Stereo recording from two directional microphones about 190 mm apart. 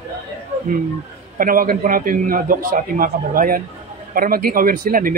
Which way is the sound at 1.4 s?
50° right (ahead or behind).